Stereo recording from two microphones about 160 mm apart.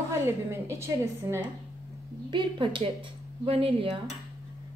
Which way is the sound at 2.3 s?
30° right (ahead or behind).